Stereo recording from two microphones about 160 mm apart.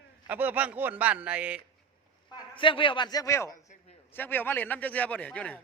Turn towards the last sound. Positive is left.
turn(degrees=10)  # may be behind; listen again after turning